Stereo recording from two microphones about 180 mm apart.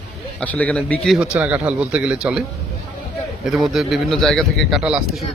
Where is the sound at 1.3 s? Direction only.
10° right (ahead or behind).